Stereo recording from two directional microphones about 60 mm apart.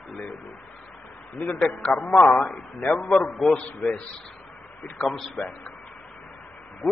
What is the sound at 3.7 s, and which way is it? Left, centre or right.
Speech, left.